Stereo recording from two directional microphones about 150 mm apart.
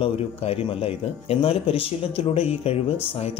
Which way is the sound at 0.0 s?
40° left (ahead or behind).